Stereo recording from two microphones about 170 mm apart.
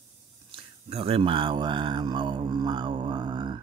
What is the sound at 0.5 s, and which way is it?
Speech, 35° right (ahead or behind).